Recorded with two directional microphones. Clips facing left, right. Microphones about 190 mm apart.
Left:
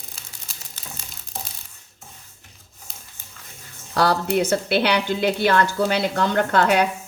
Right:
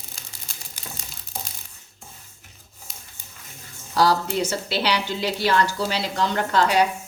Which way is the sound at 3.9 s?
60° left (ahead or behind).